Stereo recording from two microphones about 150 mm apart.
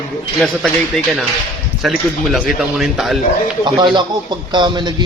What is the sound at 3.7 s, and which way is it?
A man's voice, 30° right (ahead or behind).